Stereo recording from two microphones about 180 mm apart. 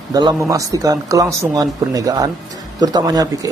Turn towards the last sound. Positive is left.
turn(degrees=-20)  # may be behind; listen again after turning